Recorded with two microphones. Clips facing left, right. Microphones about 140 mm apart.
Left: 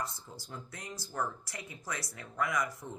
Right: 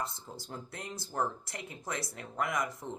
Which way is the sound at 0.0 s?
25° right (ahead or behind).